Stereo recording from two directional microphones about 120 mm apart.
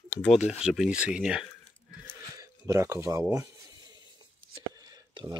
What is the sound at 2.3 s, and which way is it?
Speech, 25° right (ahead or behind).